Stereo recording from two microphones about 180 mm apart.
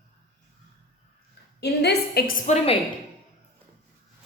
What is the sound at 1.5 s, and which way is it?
Speech, 65° left (ahead or behind).